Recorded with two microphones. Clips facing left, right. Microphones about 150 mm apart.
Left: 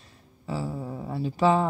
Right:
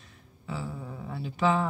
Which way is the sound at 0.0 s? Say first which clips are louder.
Left 4 dB; 35° left (ahead or behind).